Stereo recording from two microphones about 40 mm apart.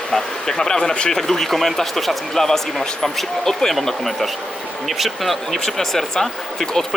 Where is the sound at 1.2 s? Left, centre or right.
Centre.